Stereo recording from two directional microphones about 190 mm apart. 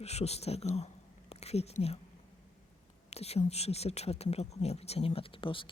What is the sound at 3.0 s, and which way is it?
Speech, 35° left (ahead or behind).